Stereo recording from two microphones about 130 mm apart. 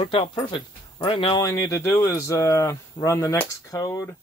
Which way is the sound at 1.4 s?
25° left (ahead or behind).